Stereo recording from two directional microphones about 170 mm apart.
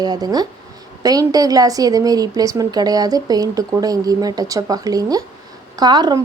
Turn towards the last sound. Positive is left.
turn(degrees=-25)  # may be behind; listen again after turning